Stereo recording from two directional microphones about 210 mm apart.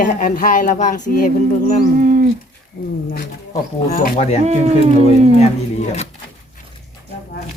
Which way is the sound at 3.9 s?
35° left (ahead or behind).